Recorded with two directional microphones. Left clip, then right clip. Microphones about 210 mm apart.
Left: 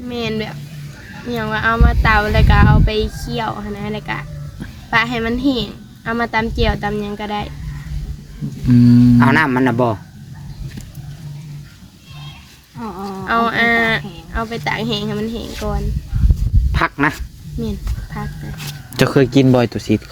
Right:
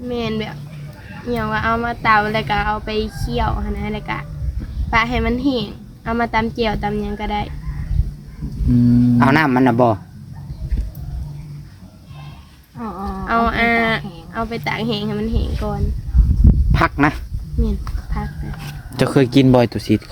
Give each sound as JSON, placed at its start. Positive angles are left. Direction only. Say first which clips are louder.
{"t": 0.1, "sound": "a woman's voice", "louder": "left 1 dB", "side_deg": 5}
{"t": 8.6, "sound": "a sound", "louder": "left 4 dB", "side_deg": 25}
{"t": 9.1, "sound": "speech", "louder": "left 1 dB", "side_deg": -25}
{"t": 12.8, "sound": "a sound", "louder": "even", "side_deg": -10}
{"t": 13.2, "sound": "a woman's voice", "louder": "left 2 dB", "side_deg": 5}
{"t": 16.7, "sound": "speech", "louder": "even", "side_deg": -30}
{"t": 17.6, "sound": "speech", "louder": "even", "side_deg": 5}
{"t": 18.7, "sound": "a sound", "louder": "left 3 dB", "side_deg": 15}
{"t": 19.1, "sound": "speech", "louder": "right 1 dB", "side_deg": 0}